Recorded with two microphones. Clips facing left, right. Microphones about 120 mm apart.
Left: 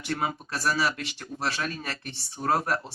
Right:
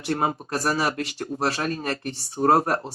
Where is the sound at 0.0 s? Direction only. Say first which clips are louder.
Right 5 dB; 40° right (ahead or behind).